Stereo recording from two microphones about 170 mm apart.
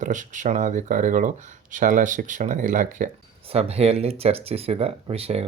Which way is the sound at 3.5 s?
35° right (ahead or behind).